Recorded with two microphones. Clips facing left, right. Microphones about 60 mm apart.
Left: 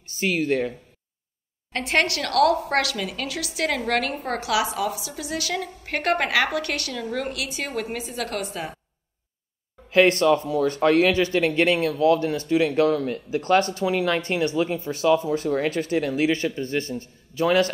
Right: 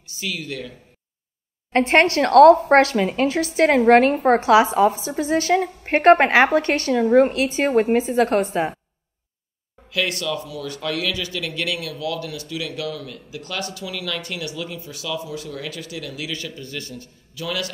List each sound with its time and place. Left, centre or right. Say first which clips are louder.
0.0 s speech: left 6 dB; left
1.7 s a woman's voice: right 7 dB; right
9.8 s speech: left 8 dB; left